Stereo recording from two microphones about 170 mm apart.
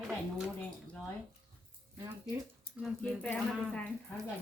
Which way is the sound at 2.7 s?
60° left (ahead or behind).